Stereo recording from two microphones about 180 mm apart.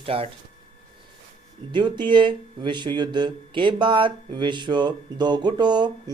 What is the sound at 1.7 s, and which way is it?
A man's voice, 25° right (ahead or behind).